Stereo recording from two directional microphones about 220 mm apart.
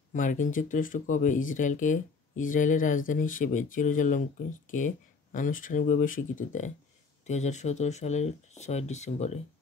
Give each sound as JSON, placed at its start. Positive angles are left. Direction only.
{"t": 0.1, "sound": "speech", "side_deg": 35}